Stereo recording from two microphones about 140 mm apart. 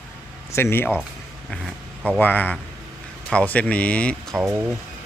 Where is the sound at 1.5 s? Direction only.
Centre (ahead or behind).